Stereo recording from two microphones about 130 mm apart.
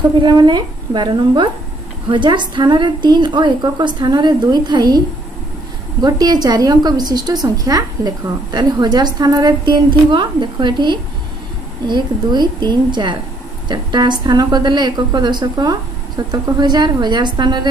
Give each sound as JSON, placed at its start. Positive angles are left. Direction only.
{"t": 0.2, "sound": "a woman's voice", "side_deg": -35}